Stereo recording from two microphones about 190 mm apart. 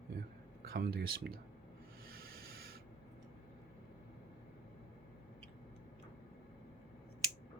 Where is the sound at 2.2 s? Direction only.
55° right (ahead or behind).